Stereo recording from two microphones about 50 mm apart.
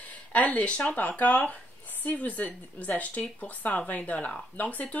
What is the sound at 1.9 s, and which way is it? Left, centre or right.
A woman's voice, left.